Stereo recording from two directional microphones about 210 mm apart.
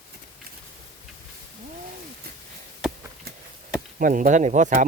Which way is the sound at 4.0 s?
40° right (ahead or behind).